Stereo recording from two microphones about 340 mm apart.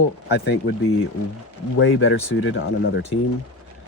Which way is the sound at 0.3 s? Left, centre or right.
Left.